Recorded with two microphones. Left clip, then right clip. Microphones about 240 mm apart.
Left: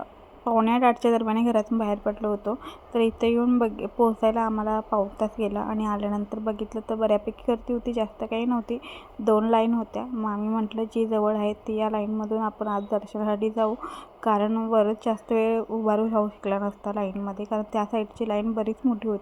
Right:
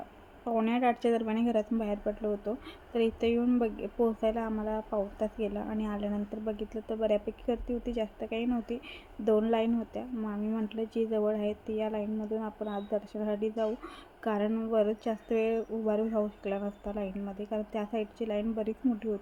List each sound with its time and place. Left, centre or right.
0.4 s a woman's voice: centre